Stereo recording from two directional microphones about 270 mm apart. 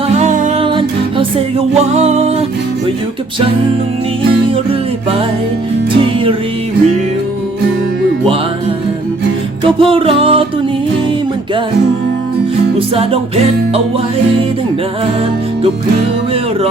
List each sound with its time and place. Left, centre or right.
0.1 s music: right
6.0 s music: centre
9.6 s music: centre
12.9 s music: right